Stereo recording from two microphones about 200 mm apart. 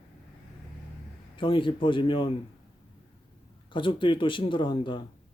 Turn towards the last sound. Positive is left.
turn(degrees=25)  # may be behind; listen again after turning